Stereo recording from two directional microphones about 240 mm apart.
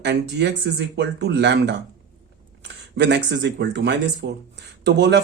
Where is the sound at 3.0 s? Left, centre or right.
Right.